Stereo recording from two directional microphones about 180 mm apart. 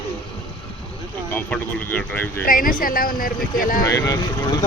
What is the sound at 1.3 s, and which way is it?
Speech, 10° left (ahead or behind).